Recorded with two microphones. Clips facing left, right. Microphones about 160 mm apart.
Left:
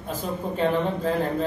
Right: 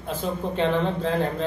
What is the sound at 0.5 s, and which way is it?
Speech, 5° left (ahead or behind).